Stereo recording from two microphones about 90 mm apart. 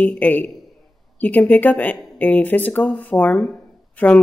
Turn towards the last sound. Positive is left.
turn(degrees=15)  # may be behind; listen again after turning